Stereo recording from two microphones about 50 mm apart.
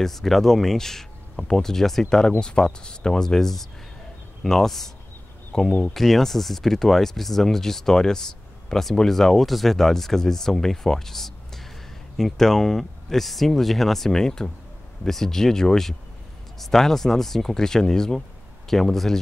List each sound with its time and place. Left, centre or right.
0.0 s speech: centre